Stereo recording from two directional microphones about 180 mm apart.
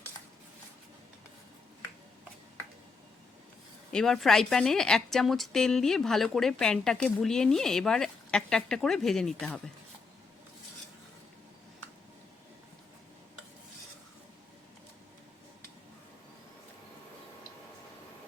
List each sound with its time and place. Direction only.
3.9 s a woman's voice: centre (ahead or behind)